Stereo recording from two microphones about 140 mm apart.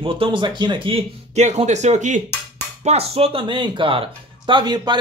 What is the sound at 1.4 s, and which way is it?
Speech, 55° right (ahead or behind).